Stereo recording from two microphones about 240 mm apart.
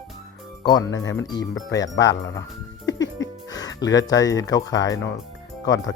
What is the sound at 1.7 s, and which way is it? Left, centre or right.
Speech, centre.